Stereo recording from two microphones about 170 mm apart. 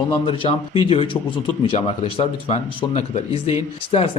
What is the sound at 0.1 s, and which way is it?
Speech, 35° left (ahead or behind).